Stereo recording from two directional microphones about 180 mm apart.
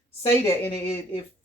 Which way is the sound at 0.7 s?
30° left (ahead or behind).